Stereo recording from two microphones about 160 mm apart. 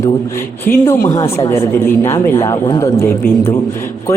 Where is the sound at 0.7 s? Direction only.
20° left (ahead or behind).